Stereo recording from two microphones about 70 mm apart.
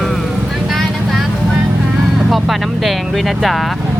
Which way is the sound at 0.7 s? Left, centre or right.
Centre.